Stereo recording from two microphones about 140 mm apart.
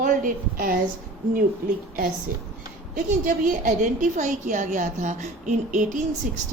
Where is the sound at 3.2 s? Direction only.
75° right (ahead or behind).